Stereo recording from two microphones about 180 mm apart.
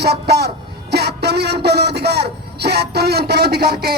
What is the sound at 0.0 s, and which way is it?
A man's voice, 65° right (ahead or behind).